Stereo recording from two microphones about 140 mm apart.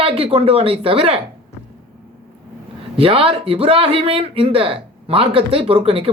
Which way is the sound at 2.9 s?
40° right (ahead or behind).